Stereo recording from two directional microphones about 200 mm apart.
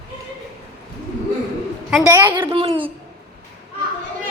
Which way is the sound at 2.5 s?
25° right (ahead or behind).